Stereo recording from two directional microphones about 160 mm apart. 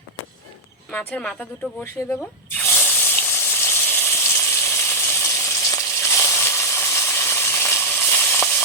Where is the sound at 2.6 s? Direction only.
10° left (ahead or behind).